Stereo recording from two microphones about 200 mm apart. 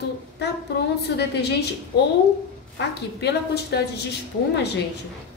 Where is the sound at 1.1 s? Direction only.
55° left (ahead or behind).